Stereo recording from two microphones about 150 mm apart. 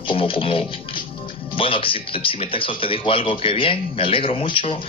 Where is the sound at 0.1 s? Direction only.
35° left (ahead or behind).